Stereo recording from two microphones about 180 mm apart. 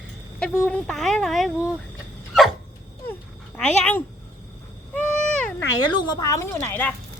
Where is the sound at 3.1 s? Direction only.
10° left (ahead or behind).